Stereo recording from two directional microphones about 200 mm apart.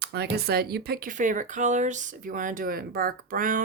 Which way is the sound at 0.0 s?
55° right (ahead or behind).